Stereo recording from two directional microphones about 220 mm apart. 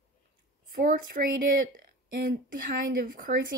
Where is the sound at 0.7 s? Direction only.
40° right (ahead or behind).